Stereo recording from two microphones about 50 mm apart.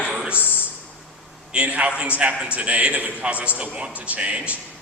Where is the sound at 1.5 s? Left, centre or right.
Right.